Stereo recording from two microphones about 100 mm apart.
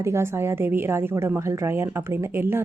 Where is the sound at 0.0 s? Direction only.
25° right (ahead or behind).